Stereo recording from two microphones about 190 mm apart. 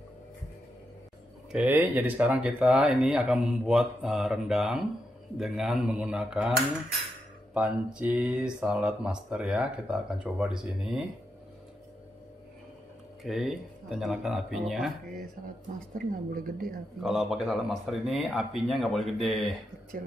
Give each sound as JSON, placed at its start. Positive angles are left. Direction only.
{"t": 1.5, "sound": "speech", "side_deg": -10}
{"t": 7.5, "sound": "speech", "side_deg": -5}
{"t": 13.2, "sound": "speech", "side_deg": 0}
{"t": 15.9, "sound": "a woman's voice", "side_deg": -50}
{"t": 17.0, "sound": "speech", "side_deg": 0}